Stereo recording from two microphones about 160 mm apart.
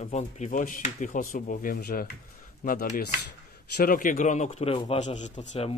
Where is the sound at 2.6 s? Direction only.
60° left (ahead or behind).